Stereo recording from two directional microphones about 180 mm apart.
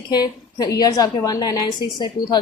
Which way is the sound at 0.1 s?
20° left (ahead or behind).